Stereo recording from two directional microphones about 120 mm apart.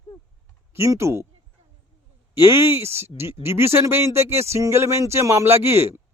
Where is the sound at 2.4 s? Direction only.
20° right (ahead or behind).